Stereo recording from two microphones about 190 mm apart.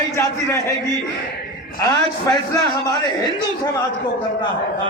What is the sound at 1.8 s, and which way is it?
A man's voice, 20° left (ahead or behind).